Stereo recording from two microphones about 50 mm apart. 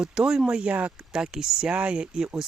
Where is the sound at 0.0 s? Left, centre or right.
Centre.